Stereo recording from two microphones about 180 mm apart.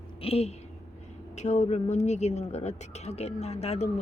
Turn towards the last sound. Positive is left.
turn(degrees=35)  # may be behind; listen again after turning